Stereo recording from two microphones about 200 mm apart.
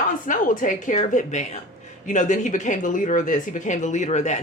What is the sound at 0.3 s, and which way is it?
Speech, 40° left (ahead or behind).